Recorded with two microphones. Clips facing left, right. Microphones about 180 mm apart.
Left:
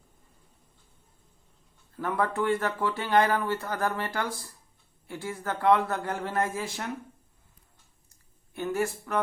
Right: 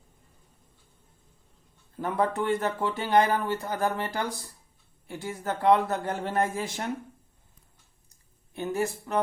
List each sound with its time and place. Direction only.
2.0 s speech: 20° right (ahead or behind)
8.5 s speech: 20° right (ahead or behind)